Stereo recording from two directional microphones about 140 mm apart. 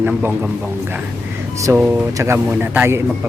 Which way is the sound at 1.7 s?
20° right (ahead or behind).